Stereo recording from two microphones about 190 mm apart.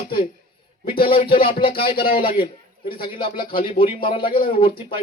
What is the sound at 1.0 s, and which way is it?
Music, 30° left (ahead or behind).